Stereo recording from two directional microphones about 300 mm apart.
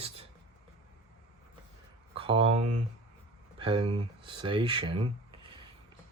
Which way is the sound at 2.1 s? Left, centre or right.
Centre.